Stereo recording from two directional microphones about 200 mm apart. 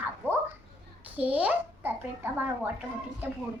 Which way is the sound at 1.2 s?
5° right (ahead or behind).